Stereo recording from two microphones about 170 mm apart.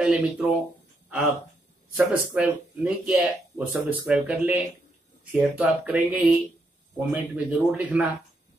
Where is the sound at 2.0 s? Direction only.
5° right (ahead or behind).